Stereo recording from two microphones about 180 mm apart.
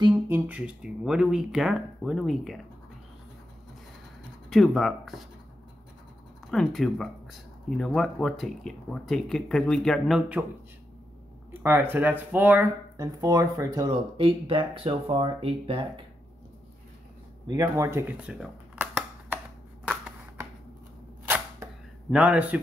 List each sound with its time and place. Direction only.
0.3 s speech: 10° right (ahead or behind)
4.5 s speech: centre (ahead or behind)
6.5 s speech: centre (ahead or behind)
11.5 s speech: 10° right (ahead or behind); by 15.9 s 30° right (ahead or behind)
17.5 s camera: 15° right (ahead or behind)
22.1 s a man's voice: 5° right (ahead or behind)